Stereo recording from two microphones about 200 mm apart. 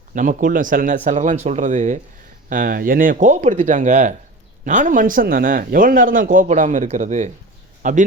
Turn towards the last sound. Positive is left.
turn(degrees=-40)  # may be behind; listen again after turning